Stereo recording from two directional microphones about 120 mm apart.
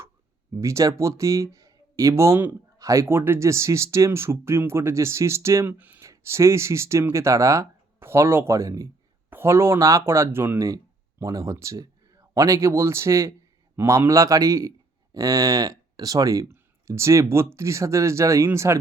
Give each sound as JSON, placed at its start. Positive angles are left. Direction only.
{"t": 0.6, "sound": "speech", "side_deg": -25}